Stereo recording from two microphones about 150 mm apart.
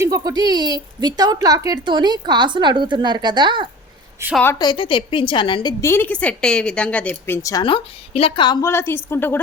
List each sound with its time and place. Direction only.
0.0 s a woman's voice: 25° right (ahead or behind)
4.2 s a woman's voice: 15° right (ahead or behind)
4.5 s a woman's voice: 30° left (ahead or behind)
5.8 s a woman's voice: 15° left (ahead or behind)
7.4 s a woman's voice: 30° left (ahead or behind)
8.6 s a woman's voice: 15° left (ahead or behind)